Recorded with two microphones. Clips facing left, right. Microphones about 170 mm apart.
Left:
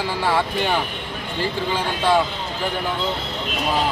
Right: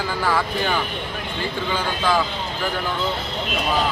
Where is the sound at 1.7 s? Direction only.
25° left (ahead or behind).